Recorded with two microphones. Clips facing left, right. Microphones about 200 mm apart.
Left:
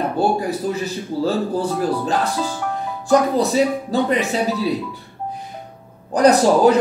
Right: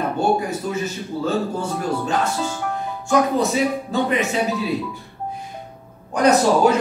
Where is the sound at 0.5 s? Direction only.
35° left (ahead or behind).